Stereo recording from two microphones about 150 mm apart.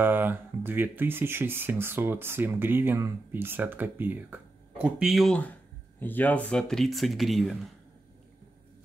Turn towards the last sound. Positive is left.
turn(degrees=0)  # may be behind; listen again after turning